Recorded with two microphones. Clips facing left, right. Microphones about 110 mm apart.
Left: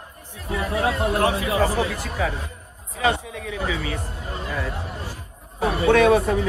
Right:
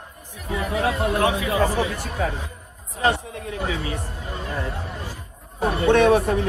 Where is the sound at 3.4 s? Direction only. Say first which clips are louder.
Even; 30° right (ahead or behind).